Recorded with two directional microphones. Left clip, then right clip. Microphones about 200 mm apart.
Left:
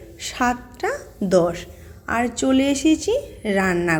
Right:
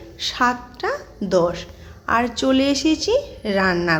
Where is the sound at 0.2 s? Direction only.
10° left (ahead or behind).